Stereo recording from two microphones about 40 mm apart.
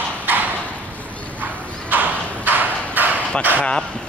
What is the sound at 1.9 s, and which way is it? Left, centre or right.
Clip-clop, right.